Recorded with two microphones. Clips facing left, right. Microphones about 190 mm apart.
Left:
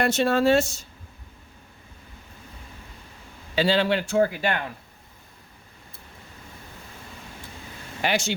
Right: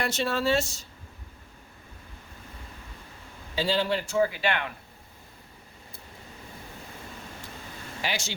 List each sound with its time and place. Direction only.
0.0 s speech: 50° left (ahead or behind)
3.5 s a man's voice: 75° left (ahead or behind); by 4.6 s 45° left (ahead or behind)
8.0 s a man's voice: 55° left (ahead or behind)